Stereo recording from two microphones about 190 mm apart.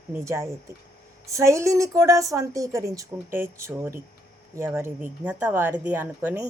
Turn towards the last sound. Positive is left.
turn(degrees=-10)  # may be behind; listen again after turning